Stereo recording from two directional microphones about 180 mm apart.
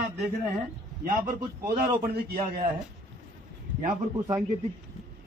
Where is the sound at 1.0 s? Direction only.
50° right (ahead or behind).